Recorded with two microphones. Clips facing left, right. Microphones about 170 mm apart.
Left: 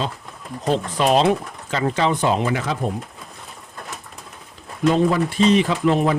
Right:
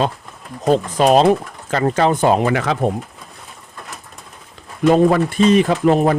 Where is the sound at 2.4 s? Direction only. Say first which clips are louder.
Right 5 dB; 70° right (ahead or behind).